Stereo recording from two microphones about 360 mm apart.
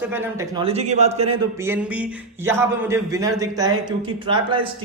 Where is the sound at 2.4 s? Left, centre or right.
Centre.